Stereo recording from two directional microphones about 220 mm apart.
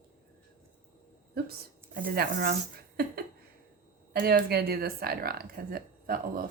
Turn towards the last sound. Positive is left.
turn(degrees=-40)  # may be behind; listen again after turning